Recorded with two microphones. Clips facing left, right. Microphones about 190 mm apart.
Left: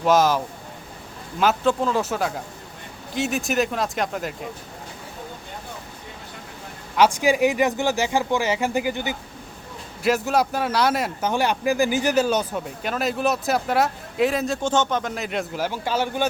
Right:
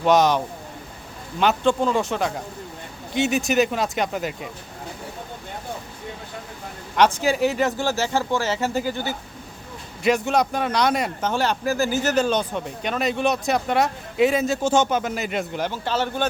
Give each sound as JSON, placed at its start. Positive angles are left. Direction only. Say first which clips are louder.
{"t": 0.0, "sound": "speech", "louder": "right 1 dB", "side_deg": 0}
{"t": 6.9, "sound": "speech", "louder": "left 1 dB", "side_deg": 10}
{"t": 10.0, "sound": "speech", "louder": "right 1 dB", "side_deg": 5}